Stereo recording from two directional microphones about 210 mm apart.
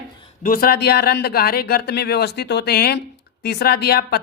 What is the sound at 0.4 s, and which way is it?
Speech, 45° left (ahead or behind).